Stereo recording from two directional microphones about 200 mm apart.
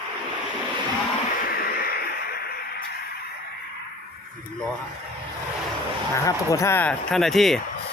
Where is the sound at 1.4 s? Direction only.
50° left (ahead or behind).